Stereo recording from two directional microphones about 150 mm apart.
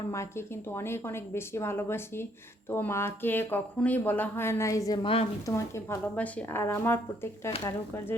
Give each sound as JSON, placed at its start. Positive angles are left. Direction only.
{"t": 0.1, "sound": "speech", "side_deg": 15}